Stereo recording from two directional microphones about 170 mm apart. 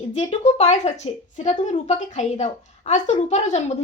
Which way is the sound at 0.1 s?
40° left (ahead or behind).